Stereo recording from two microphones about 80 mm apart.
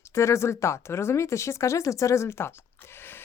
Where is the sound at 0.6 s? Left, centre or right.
Left.